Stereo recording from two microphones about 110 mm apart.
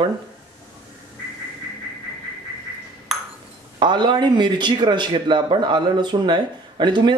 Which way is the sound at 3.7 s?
45° right (ahead or behind).